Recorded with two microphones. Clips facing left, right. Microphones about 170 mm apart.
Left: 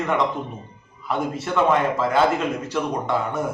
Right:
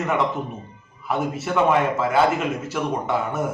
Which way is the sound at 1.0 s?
5° right (ahead or behind).